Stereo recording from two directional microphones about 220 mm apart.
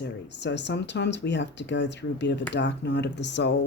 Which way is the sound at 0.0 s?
50° left (ahead or behind).